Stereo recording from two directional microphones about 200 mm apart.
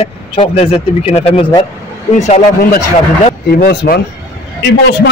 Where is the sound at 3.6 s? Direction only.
50° left (ahead or behind).